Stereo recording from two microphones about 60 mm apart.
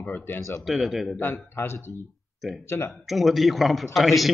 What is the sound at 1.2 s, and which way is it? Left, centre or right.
A man's voice, left.